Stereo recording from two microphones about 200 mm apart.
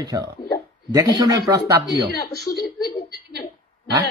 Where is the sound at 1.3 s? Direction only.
15° right (ahead or behind).